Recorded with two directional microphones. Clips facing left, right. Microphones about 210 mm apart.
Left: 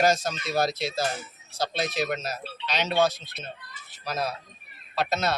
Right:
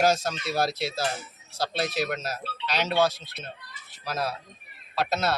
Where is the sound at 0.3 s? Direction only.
5° right (ahead or behind).